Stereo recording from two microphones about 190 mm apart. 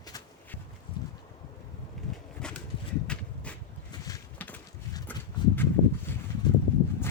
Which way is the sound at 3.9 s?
20° left (ahead or behind).